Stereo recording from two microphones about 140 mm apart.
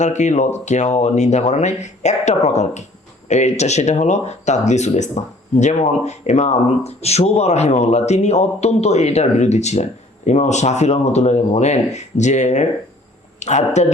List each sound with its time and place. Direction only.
0.0 s speech: 55° left (ahead or behind)